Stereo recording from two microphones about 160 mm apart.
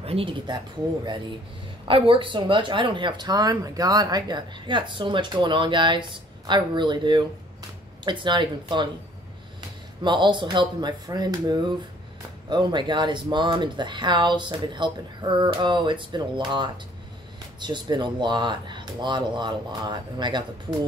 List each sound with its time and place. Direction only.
0.0 s speech: 35° right (ahead or behind)
1.9 s speech: 35° right (ahead or behind)
10.0 s speech: 30° right (ahead or behind)